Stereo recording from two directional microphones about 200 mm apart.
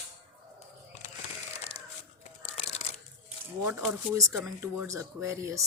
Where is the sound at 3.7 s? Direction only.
10° right (ahead or behind).